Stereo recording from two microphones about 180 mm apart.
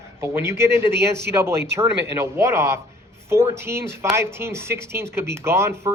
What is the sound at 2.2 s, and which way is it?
Speech, 15° right (ahead or behind).